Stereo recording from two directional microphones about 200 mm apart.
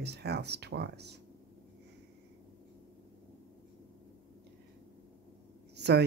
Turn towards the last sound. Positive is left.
turn(degrees=-55)  # may be behind; listen again after turning